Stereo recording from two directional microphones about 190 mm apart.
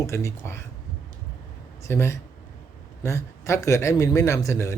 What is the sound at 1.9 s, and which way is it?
A man's voice, 15° left (ahead or behind).